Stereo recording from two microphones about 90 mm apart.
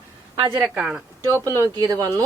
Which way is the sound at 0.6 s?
10° right (ahead or behind).